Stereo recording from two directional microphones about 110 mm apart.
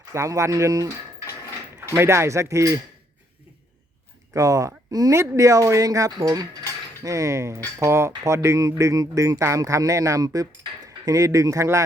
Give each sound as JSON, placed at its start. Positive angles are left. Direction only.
{"t": 0.1, "sound": "speech", "side_deg": -30}
{"t": 1.9, "sound": "speech", "side_deg": -25}
{"t": 4.4, "sound": "speech", "side_deg": -30}